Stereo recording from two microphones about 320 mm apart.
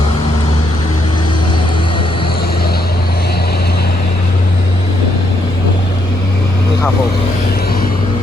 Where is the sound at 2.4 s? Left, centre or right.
Left.